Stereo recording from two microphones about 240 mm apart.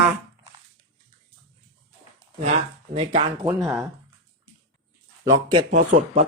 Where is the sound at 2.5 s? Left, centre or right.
Right.